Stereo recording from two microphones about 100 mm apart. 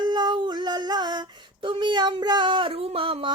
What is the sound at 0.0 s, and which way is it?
Female singing, 50° right (ahead or behind).